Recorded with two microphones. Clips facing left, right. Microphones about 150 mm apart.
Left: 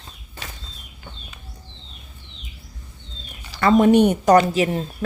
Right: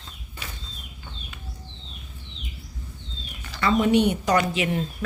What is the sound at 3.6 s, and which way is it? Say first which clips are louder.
A woman's voice: left 6 dB; 50° left (ahead or behind).